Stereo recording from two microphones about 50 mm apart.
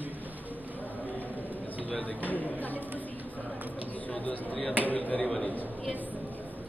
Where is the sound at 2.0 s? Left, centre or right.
Left.